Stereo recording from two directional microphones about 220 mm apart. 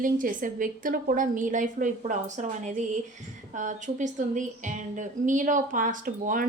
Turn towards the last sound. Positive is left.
turn(degrees=-40)  # may be behind; listen again after turning